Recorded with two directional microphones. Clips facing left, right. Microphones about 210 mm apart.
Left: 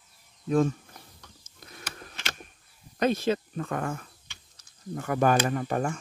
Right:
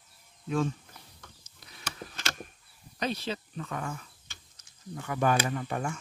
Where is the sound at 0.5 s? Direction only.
45° left (ahead or behind).